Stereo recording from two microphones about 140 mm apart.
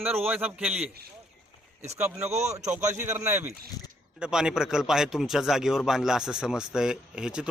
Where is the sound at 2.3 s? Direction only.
50° right (ahead or behind).